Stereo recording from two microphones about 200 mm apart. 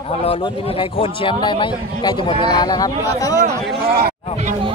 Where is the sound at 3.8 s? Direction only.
50° right (ahead or behind).